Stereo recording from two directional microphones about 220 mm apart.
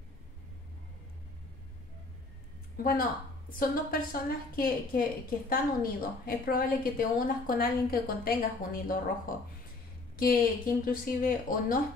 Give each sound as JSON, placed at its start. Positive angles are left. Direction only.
{"t": 2.8, "sound": "a woman's voice", "side_deg": 40}